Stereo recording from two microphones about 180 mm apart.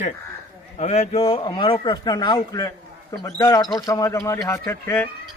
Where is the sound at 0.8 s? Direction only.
35° left (ahead or behind).